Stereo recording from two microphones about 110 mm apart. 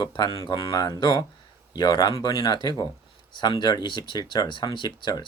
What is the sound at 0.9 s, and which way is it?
Speech, 45° left (ahead or behind).